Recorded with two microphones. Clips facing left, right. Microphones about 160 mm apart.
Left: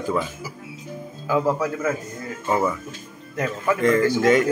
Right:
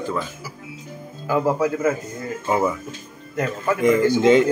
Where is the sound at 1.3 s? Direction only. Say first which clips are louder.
Right 2 dB; 5° right (ahead or behind).